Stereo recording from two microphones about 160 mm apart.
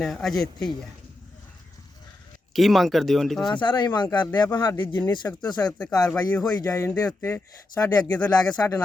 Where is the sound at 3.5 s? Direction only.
30° left (ahead or behind).